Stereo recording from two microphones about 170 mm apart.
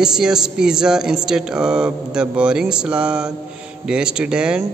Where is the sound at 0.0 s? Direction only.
5° right (ahead or behind).